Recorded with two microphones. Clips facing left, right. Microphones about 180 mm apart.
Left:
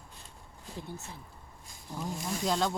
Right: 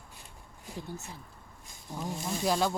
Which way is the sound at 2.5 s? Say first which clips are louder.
Right 2 dB; 10° right (ahead or behind).